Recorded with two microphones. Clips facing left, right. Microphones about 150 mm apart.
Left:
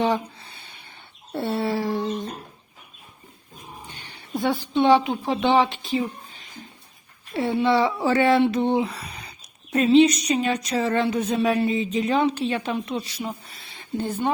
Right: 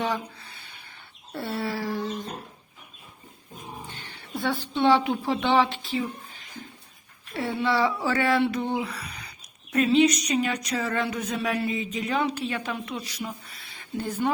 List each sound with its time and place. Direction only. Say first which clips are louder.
0.0 s a sound: left 6 dB; 25° left (ahead or behind)
1.3 s speech: left 5 dB; 25° left (ahead or behind)
4.4 s speech: left 4 dB; 15° left (ahead or behind)
7.3 s speech: left 5 dB; 20° left (ahead or behind)